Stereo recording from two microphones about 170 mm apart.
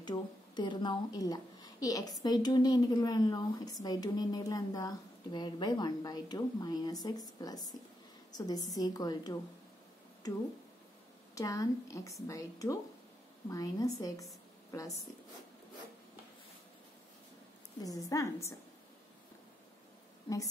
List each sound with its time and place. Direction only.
0.0 s a woman's voice: 25° left (ahead or behind)
17.8 s speech: 20° left (ahead or behind)